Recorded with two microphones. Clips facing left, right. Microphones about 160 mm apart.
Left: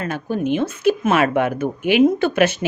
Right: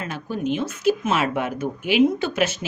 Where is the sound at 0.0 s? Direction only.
50° left (ahead or behind).